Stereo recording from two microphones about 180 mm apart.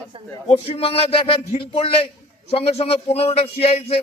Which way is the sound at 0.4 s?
35° left (ahead or behind).